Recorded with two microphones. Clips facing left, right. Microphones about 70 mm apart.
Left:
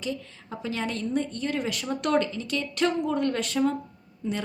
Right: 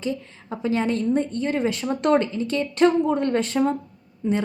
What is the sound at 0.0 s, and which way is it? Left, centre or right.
A woman's voice, right.